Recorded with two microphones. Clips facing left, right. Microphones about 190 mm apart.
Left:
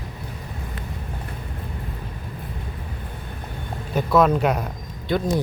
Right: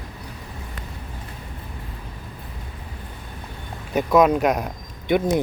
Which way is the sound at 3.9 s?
15° right (ahead or behind).